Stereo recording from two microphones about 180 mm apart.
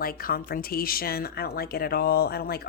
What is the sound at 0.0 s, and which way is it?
A woman's voice, 55° left (ahead or behind).